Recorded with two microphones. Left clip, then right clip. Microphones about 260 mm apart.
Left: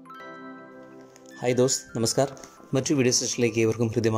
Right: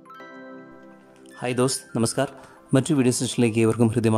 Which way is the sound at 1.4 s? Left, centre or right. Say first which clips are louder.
Left 1 dB; centre.